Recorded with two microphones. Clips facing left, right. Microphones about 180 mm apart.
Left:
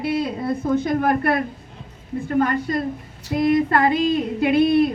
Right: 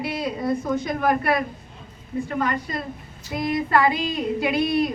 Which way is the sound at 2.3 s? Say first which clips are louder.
Left 7 dB; 50° left (ahead or behind).